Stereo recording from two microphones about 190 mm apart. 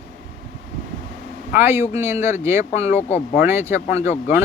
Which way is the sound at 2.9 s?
35° left (ahead or behind).